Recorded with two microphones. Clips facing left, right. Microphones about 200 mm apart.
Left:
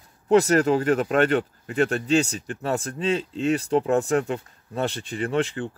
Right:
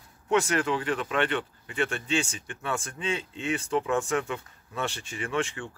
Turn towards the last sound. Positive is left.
turn(degrees=35)  # may be behind; listen again after turning